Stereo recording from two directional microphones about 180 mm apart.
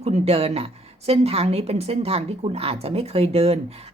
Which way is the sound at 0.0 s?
35° right (ahead or behind).